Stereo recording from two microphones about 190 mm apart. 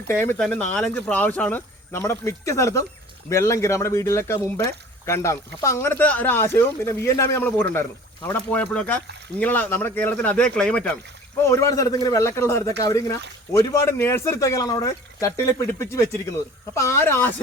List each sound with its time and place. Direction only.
0.1 s speech: 10° left (ahead or behind)